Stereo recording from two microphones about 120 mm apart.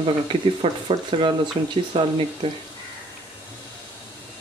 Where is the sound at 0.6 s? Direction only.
45° right (ahead or behind).